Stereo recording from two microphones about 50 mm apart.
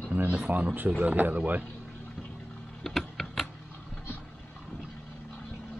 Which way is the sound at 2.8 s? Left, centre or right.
Centre.